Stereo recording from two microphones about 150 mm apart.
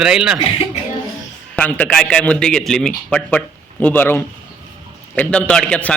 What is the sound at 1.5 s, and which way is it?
A man's voice, 10° left (ahead or behind).